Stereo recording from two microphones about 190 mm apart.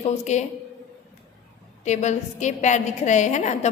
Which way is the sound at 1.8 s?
40° left (ahead or behind).